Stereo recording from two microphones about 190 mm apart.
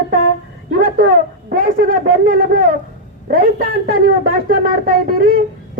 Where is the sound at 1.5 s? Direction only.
45° right (ahead or behind).